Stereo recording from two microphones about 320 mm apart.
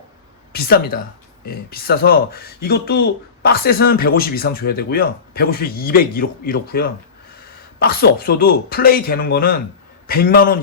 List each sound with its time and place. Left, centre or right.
0.5 s speech: left